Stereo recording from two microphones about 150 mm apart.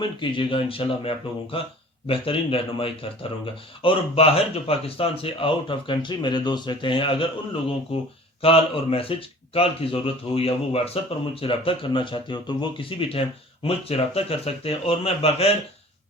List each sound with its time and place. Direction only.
0.0 s speech: 35° left (ahead or behind)